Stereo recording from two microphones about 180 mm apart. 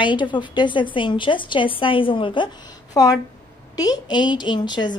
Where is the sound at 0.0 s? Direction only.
25° left (ahead or behind).